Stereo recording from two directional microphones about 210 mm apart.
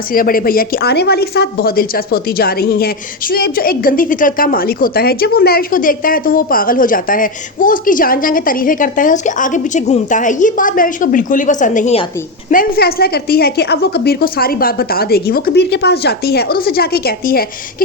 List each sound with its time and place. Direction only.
0.1 s a woman's voice: 45° left (ahead or behind)